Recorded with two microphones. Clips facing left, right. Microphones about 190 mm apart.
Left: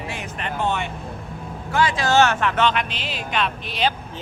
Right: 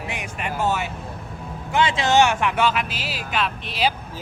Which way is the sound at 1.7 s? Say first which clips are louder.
Even; 25° right (ahead or behind).